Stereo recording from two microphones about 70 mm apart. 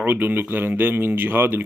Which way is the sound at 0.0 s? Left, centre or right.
Right.